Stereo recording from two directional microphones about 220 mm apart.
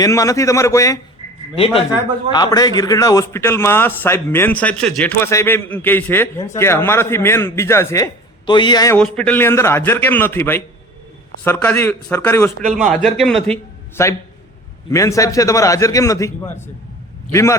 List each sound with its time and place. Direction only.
0.0 s a man's voice: 15° left (ahead or behind)
1.5 s a man's voice: 25° left (ahead or behind)
9.0 s a man's voice: 5° left (ahead or behind)